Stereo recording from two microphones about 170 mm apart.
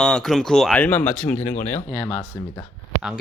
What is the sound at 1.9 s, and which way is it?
Speech, 20° left (ahead or behind).